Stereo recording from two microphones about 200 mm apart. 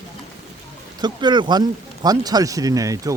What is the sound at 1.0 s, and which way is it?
Speech, 20° right (ahead or behind).